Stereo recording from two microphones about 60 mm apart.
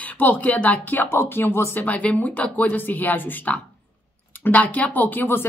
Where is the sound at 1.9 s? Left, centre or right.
Left.